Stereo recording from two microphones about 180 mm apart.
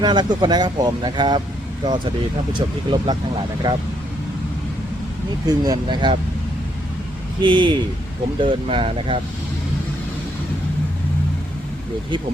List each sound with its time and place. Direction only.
0.0 s speech: 25° right (ahead or behind)
5.5 s speech: 20° right (ahead or behind)
7.4 s speech: 25° right (ahead or behind)